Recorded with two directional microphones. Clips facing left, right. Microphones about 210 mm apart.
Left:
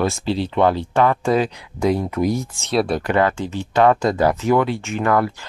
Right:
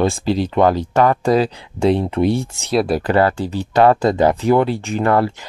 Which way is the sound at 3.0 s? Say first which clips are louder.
Right 3 dB; 35° right (ahead or behind).